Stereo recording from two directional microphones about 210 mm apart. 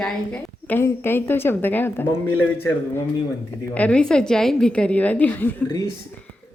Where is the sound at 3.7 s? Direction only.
5° left (ahead or behind).